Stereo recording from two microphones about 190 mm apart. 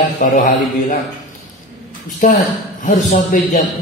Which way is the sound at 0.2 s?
45° left (ahead or behind).